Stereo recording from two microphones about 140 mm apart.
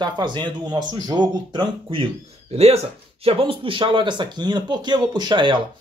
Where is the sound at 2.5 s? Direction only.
45° right (ahead or behind).